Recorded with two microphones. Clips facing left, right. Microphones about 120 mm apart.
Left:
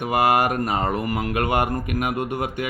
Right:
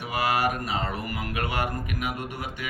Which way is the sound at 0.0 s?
55° left (ahead or behind).